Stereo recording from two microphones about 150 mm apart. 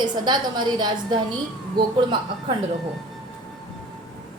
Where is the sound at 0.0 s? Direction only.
30° right (ahead or behind).